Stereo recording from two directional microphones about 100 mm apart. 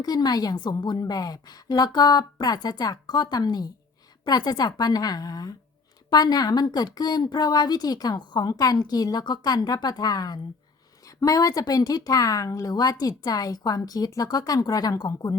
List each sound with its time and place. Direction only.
0.0 s a woman's voice: 40° left (ahead or behind)